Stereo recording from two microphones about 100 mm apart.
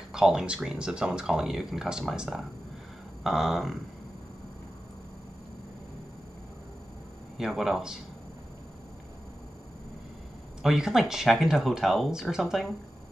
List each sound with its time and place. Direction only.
0.1 s speech: 5° right (ahead or behind)
7.3 s speech: 5° right (ahead or behind)
10.6 s speech: 5° right (ahead or behind)